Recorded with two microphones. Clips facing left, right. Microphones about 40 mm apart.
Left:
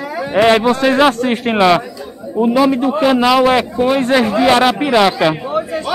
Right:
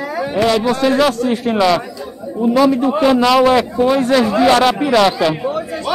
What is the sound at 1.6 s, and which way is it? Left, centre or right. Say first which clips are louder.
Speech: left 3 dB; left.